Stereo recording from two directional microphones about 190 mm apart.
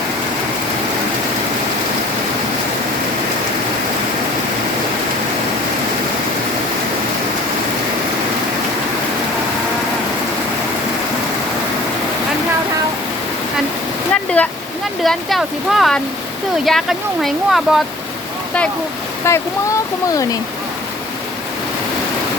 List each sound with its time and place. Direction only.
14.1 s a sound: 10° left (ahead or behind)
15.0 s speech: centre (ahead or behind)
19.3 s speech: 15° left (ahead or behind)